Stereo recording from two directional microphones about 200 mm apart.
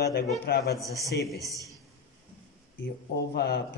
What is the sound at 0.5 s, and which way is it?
Speech, 55° left (ahead or behind).